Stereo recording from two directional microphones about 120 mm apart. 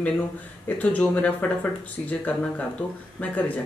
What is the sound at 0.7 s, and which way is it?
Speech, 15° left (ahead or behind).